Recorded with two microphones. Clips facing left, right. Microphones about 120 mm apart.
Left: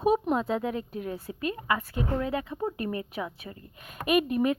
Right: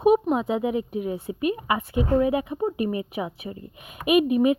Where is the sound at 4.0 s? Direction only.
10° right (ahead or behind).